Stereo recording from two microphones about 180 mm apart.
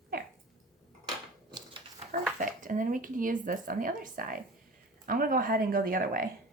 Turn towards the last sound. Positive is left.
turn(degrees=-50)  # may be behind; listen again after turning